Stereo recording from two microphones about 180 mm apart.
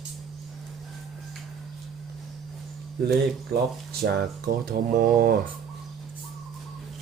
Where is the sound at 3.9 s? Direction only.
55° right (ahead or behind).